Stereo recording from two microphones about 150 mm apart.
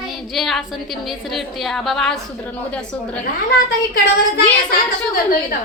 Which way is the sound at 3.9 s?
80° left.